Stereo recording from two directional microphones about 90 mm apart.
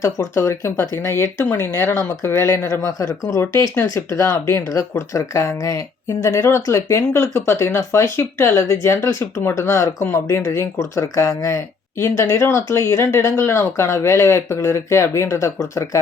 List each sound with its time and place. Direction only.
0.0 s speech: 35° left (ahead or behind)
1.9 s speech: 40° left (ahead or behind)